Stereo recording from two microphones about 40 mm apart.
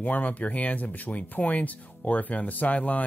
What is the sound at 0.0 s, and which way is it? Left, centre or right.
Speech, left.